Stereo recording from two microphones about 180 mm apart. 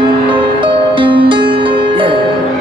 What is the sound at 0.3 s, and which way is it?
Music, 30° right (ahead or behind).